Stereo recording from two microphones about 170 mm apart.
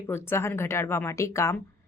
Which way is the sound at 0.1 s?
15° left (ahead or behind).